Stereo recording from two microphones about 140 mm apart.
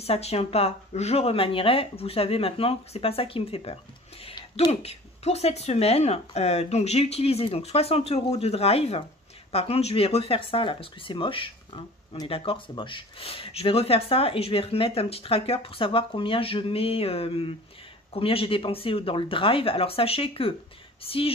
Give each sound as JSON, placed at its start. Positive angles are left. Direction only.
{"t": 0.0, "sound": "speech", "side_deg": 45}
{"t": 4.4, "sound": "a sound", "side_deg": 30}
{"t": 4.8, "sound": "speech", "side_deg": 50}